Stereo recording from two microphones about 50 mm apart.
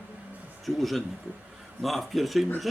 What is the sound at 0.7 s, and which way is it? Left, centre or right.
Speech, centre.